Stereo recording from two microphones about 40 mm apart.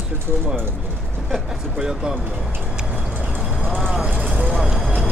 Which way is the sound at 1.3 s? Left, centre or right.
Centre.